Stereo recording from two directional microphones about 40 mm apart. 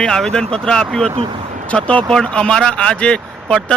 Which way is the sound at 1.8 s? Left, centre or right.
Left.